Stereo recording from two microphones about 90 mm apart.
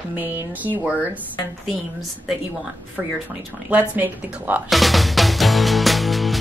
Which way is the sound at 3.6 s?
20° right (ahead or behind).